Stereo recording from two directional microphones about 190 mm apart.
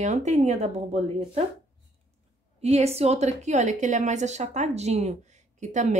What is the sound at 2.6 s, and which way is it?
A woman's voice, 35° right (ahead or behind).